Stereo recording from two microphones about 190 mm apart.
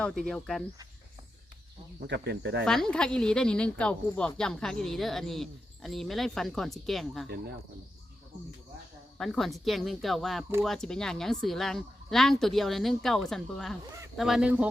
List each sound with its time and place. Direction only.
0.0 s speech: centre (ahead or behind)
2.0 s speech: 60° right (ahead or behind)
2.6 s speech: centre (ahead or behind)
9.1 s speech: centre (ahead or behind)